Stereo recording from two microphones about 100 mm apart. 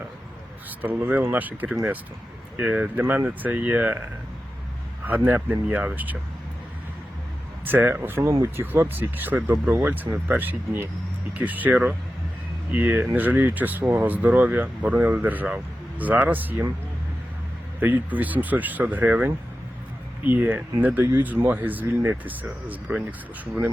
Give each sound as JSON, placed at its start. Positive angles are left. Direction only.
{"t": 0.8, "sound": "speech", "side_deg": -20}
{"t": 5.0, "sound": "speech", "side_deg": -15}
{"t": 7.6, "sound": "speech", "side_deg": -20}
{"t": 17.7, "sound": "speech", "side_deg": -15}